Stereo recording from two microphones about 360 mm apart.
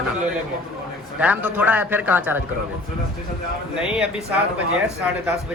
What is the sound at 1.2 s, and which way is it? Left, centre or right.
Speech, centre.